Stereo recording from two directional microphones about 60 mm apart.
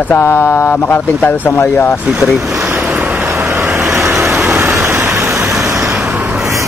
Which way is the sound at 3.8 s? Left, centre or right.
Right.